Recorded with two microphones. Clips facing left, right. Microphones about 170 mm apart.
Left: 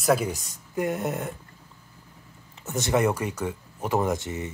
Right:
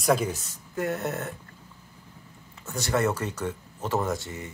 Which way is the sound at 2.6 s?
20° left (ahead or behind).